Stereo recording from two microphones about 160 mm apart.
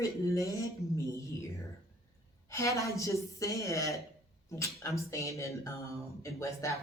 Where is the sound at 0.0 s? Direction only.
20° left (ahead or behind).